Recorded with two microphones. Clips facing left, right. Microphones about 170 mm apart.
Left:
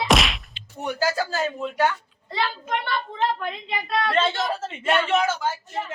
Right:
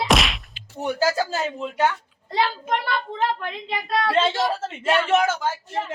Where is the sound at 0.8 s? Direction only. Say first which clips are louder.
Right 2 dB; 25° right (ahead or behind).